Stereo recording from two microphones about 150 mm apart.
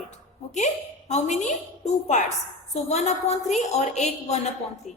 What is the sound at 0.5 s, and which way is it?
A woman's voice, 50° left (ahead or behind).